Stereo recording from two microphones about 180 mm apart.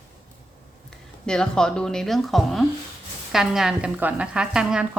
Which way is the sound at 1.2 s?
5° left (ahead or behind).